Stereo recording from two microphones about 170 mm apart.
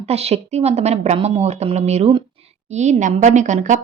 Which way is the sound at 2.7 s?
45° right (ahead or behind).